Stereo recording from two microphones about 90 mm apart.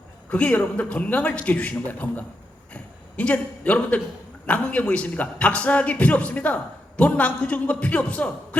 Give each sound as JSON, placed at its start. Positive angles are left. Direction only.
{"t": 0.3, "sound": "a man's voice", "side_deg": 15}